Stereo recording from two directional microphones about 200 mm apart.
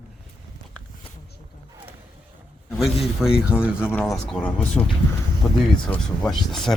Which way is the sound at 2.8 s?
Centre (ahead or behind).